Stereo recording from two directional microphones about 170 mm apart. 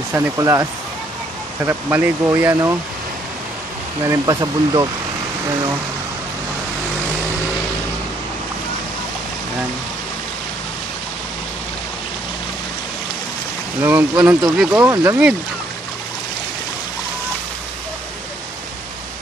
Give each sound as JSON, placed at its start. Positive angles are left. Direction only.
{"t": 0.1, "sound": "speech", "side_deg": -20}
{"t": 1.7, "sound": "speech", "side_deg": -15}
{"t": 4.0, "sound": "speech", "side_deg": -20}
{"t": 13.7, "sound": "speech", "side_deg": -10}